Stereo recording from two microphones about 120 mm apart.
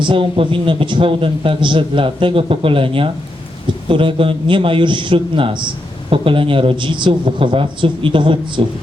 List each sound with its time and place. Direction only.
0.0 s a man's voice: 45° right (ahead or behind)